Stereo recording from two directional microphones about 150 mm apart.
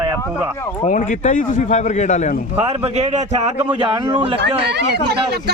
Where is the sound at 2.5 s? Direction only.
40° right (ahead or behind).